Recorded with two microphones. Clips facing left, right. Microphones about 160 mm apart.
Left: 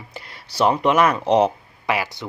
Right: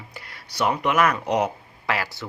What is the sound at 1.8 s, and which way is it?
Speech, 15° left (ahead or behind).